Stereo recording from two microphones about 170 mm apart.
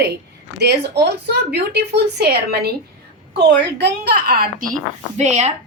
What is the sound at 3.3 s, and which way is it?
A woman's voice, 90° right.